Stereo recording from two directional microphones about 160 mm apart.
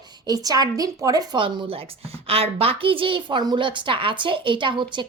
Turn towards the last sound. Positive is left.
turn(degrees=-30)  # may be behind; listen again after turning